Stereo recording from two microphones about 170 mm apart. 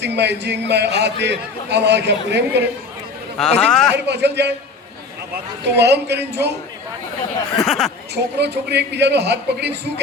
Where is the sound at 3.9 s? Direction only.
85° right.